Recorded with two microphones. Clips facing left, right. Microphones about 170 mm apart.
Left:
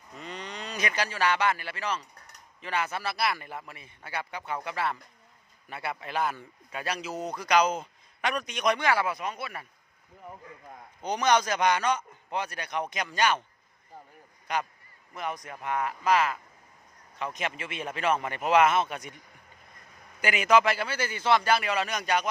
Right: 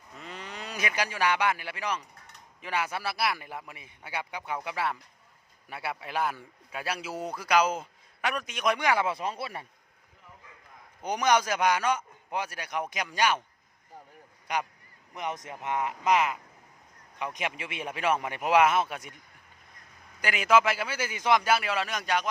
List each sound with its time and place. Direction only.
0.2 s a man's voice: 5° right (ahead or behind)
9.1 s speech: 30° right (ahead or behind)
11.0 s a man's voice: 10° right (ahead or behind)
14.4 s a man's voice: 10° right (ahead or behind)
20.2 s a man's voice: centre (ahead or behind)